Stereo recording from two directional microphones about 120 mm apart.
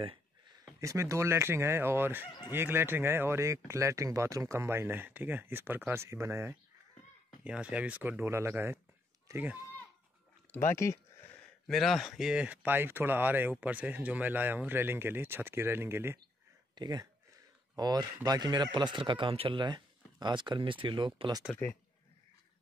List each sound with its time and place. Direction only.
0.7 s speech: 25° right (ahead or behind)
7.4 s speech: 10° right (ahead or behind)
10.5 s speech: 20° left (ahead or behind)
11.6 s speech: centre (ahead or behind); by 16.2 s 20° right (ahead or behind)
16.7 s speech: 35° right (ahead or behind)